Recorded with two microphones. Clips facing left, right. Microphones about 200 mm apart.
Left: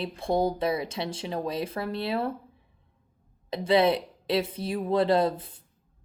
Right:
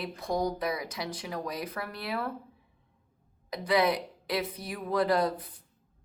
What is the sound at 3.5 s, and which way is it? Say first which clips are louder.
Speech: left 4 dB; 25° left (ahead or behind).